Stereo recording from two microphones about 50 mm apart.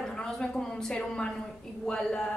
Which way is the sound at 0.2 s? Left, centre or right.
Centre.